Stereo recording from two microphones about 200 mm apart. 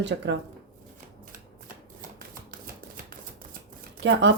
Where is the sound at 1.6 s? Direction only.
45° right (ahead or behind).